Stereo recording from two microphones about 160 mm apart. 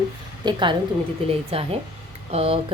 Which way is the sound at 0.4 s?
30° right (ahead or behind).